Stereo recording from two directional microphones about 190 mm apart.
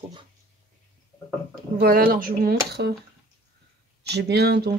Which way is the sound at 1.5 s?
50° right (ahead or behind).